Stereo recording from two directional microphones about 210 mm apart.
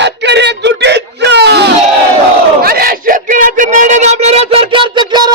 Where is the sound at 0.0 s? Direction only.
55° right (ahead or behind).